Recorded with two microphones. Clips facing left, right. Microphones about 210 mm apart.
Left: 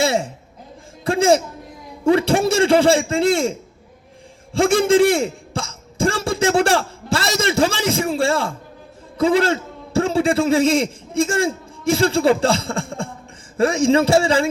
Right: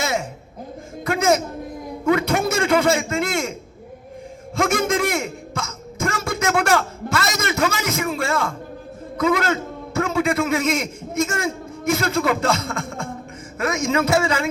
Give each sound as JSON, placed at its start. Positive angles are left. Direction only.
{"t": 0.0, "sound": "a sound", "side_deg": 30}
{"t": 1.0, "sound": "a man's voice", "side_deg": 30}
{"t": 4.5, "sound": "a man's voice", "side_deg": 30}